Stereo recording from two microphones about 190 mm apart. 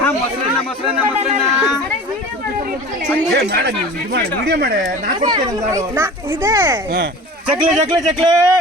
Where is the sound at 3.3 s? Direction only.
60° right (ahead or behind).